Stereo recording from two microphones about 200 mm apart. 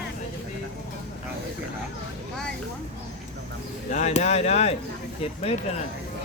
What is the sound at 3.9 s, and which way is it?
Speech, 35° left (ahead or behind).